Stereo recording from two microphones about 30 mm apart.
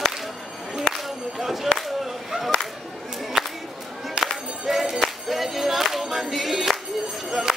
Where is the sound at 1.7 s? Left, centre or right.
Centre.